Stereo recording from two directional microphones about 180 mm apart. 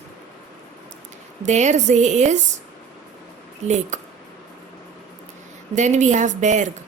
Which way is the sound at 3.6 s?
40° right (ahead or behind).